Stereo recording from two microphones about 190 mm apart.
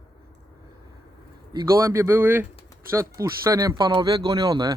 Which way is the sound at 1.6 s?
15° right (ahead or behind).